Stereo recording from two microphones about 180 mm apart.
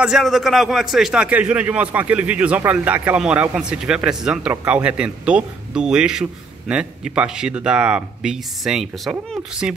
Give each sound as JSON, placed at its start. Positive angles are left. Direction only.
{"t": 0.0, "sound": "a man's voice", "side_deg": 0}